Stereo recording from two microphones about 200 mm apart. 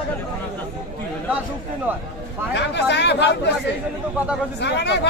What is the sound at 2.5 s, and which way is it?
Speech, 60° left (ahead or behind).